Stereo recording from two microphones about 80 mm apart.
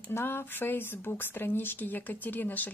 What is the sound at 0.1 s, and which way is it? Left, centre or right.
A woman's voice, left.